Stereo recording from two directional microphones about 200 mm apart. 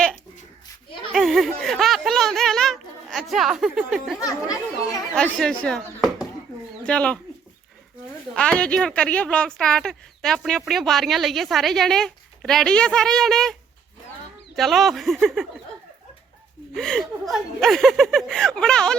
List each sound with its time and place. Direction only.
1.1 s a sound: centre (ahead or behind)
4.2 s a child's voice: 15° left (ahead or behind)
5.1 s speech: 5° left (ahead or behind)
8.3 s speech: 5° left (ahead or behind)
16.7 s speech: centre (ahead or behind)